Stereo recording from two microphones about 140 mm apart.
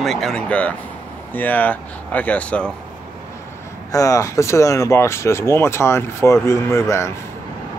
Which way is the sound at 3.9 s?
25° left (ahead or behind).